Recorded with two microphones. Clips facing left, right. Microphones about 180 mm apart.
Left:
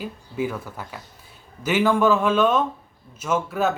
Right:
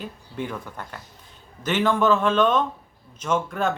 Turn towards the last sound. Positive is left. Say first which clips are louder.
# left 1 dB
turn(degrees=5)  # may be behind; listen again after turning